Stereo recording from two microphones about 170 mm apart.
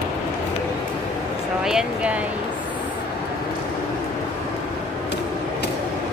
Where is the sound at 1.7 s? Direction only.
5° right (ahead or behind).